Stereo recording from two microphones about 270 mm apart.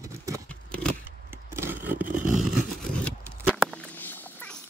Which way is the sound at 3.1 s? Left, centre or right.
Centre.